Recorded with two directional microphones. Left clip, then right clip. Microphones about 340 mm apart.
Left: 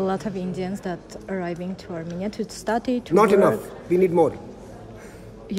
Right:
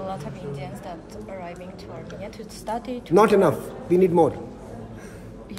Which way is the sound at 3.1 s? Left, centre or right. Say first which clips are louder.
Even; centre.